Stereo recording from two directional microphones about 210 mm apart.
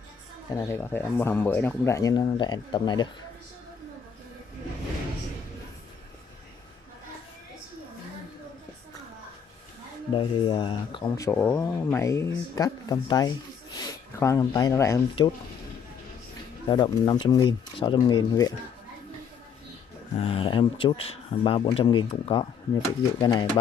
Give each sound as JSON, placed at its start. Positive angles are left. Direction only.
{"t": 0.5, "sound": "speech", "side_deg": 15}
{"t": 10.1, "sound": "speech", "side_deg": 25}
{"t": 16.6, "sound": "speech", "side_deg": 20}
{"t": 20.2, "sound": "speech", "side_deg": 25}